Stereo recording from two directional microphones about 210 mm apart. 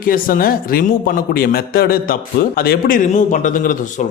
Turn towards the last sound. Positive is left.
turn(degrees=40)  # may be behind; listen again after turning